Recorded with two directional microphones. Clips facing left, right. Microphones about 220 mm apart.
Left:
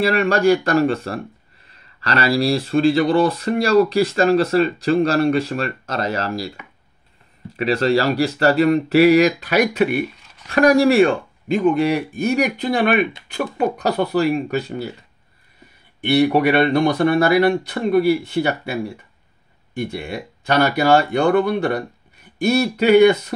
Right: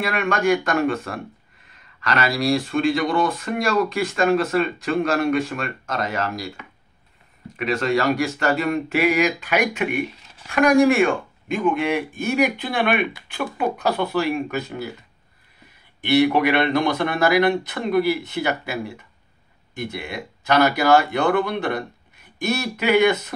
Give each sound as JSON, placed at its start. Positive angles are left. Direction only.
{"t": 0.0, "sound": "speech", "side_deg": 35}
{"t": 7.5, "sound": "speech", "side_deg": 35}
{"t": 16.1, "sound": "speech", "side_deg": 35}